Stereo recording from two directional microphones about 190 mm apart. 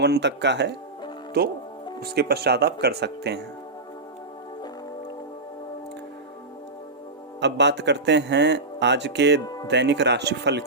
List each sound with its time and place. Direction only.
0.0 s speech: 65° right (ahead or behind)
2.0 s speech: 55° right (ahead or behind)
7.4 s speech: 65° right (ahead or behind)